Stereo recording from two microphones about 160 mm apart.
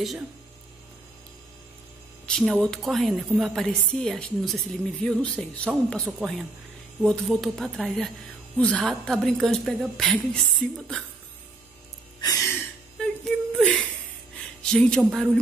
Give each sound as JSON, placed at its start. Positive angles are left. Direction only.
{"t": 2.2, "sound": "a woman's voice", "side_deg": 5}
{"t": 12.2, "sound": "music", "side_deg": 20}
{"t": 13.0, "sound": "a sound", "side_deg": 5}
{"t": 14.6, "sound": "a woman's voice", "side_deg": 5}